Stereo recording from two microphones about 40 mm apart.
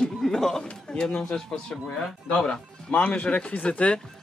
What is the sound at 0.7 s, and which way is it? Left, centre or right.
Speech, left.